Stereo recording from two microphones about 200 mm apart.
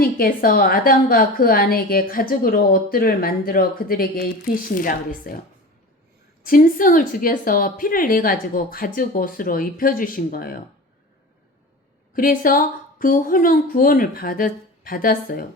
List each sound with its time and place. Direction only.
0.0 s a woman's voice: 45° left (ahead or behind)
6.4 s a woman's voice: 45° left (ahead or behind)
12.1 s a woman's voice: 45° left (ahead or behind)